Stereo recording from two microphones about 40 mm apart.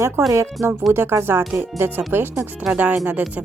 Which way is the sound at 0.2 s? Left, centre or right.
Right.